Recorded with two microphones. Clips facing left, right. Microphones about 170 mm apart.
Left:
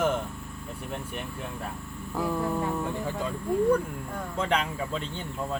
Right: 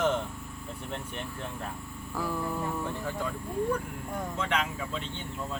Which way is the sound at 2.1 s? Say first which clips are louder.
Left 4 dB; 20° left (ahead or behind).